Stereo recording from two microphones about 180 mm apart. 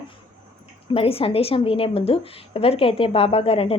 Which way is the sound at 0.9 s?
30° left (ahead or behind).